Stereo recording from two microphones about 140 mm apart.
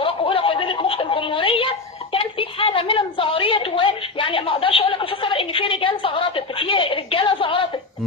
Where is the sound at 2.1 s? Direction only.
40° left (ahead or behind).